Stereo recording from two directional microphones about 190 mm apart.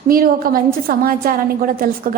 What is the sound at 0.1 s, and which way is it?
A woman's voice, 50° right (ahead or behind).